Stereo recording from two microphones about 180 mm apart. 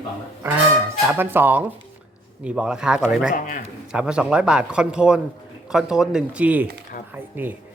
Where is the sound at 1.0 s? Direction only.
10° right (ahead or behind).